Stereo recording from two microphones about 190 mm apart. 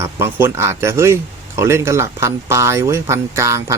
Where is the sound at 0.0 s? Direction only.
15° right (ahead or behind).